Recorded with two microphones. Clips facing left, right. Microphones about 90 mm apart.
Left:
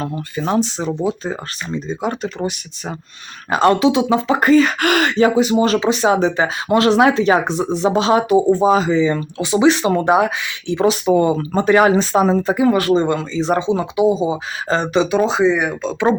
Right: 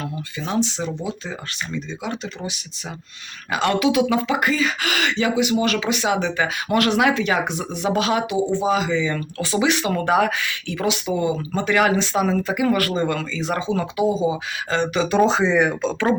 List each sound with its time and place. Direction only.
0.0 s speech: 40° left (ahead or behind)
3.5 s speech: 35° left (ahead or behind)
8.3 s speech: 40° left (ahead or behind)
9.4 s speech: 20° left (ahead or behind)
9.6 s speech: 30° left (ahead or behind)
10.8 s speech: 40° left (ahead or behind); by 14.3 s 20° left (ahead or behind)
14.7 s speech: 35° left (ahead or behind)
15.1 s speech: 5° left (ahead or behind)